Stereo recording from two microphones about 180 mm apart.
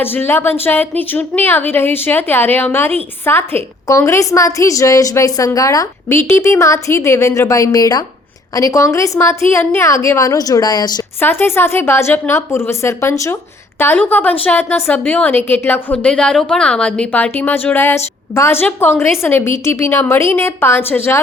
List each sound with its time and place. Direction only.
0.0 s a woman's voice: 10° left (ahead or behind)